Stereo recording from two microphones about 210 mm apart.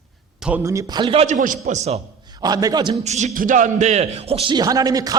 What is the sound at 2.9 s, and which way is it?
A man's voice, 35° right (ahead or behind).